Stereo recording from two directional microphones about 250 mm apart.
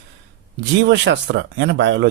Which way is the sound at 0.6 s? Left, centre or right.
Right.